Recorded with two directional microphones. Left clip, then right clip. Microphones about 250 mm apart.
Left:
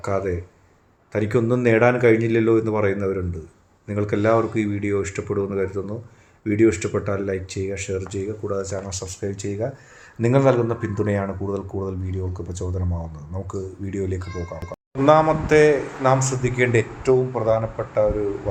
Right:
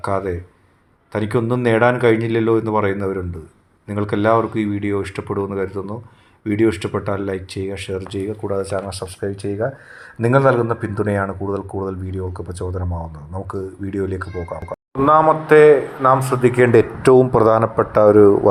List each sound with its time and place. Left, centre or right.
0.0 s speech: centre
8.4 s speech: centre
16.6 s speech: right